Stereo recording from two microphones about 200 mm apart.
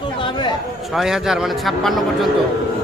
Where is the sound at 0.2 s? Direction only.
25° left (ahead or behind).